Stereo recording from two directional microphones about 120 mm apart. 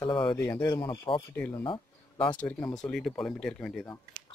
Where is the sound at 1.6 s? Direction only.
45° left (ahead or behind).